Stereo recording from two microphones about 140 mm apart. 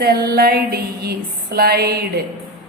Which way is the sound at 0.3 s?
90° right.